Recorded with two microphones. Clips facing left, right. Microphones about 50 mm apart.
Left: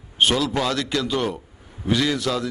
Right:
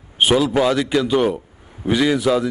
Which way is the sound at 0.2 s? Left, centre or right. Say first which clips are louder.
Right 5 dB; centre.